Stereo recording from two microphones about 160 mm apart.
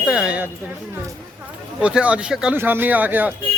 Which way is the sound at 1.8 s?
10° right (ahead or behind).